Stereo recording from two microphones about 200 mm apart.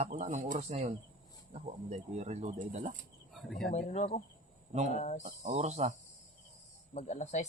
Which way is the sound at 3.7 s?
35° left (ahead or behind).